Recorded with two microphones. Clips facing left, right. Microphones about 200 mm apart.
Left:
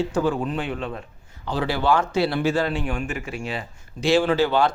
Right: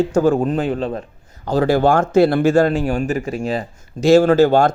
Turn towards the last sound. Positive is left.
turn(degrees=-45)  # may be behind; listen again after turning